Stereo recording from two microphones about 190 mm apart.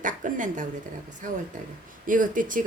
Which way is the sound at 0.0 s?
45° right (ahead or behind).